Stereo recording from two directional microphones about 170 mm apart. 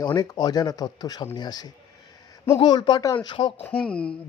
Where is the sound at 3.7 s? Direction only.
5° left (ahead or behind).